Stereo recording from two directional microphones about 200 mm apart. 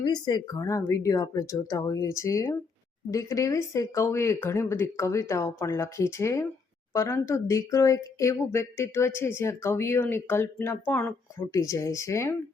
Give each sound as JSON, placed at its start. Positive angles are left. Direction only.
{"t": 0.0, "sound": "speech", "side_deg": 20}